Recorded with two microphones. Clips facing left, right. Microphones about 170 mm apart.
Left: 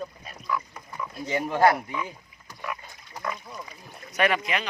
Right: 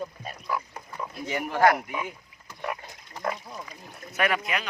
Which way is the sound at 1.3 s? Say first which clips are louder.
Left 3 dB; 20° left (ahead or behind).